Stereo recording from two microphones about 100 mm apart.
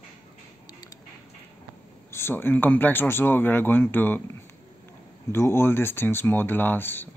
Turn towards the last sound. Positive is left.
turn(degrees=20)  # may be behind; listen again after turning